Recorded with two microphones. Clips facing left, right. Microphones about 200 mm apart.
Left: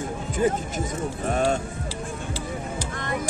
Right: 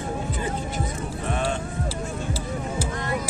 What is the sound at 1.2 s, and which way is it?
Speech, 40° left (ahead or behind).